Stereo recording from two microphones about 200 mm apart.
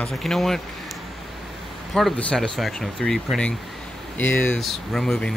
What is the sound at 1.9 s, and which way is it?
Speech, 5° left (ahead or behind).